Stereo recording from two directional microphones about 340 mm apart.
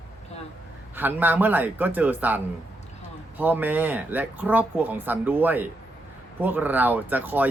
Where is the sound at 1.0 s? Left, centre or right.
Centre.